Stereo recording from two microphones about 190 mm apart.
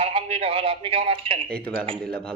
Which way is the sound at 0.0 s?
30° right (ahead or behind).